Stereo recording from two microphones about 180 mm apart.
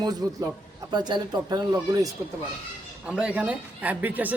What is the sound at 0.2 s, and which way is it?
A man's voice, 20° right (ahead or behind).